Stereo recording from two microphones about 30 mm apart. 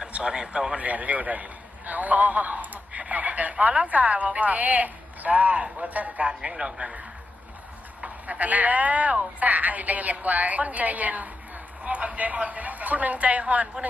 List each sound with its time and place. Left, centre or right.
0.2 s speech: right
0.8 s a man's voice: right
3.1 s radio: right
3.6 s a woman's voice: right
6.5 s speech: right
8.0 s a woman's voice: right
11.8 s a woman's voice: right